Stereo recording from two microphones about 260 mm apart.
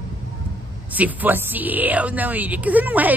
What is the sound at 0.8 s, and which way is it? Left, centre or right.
Speech, centre.